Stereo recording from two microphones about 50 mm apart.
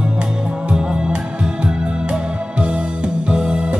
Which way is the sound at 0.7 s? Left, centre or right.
Centre.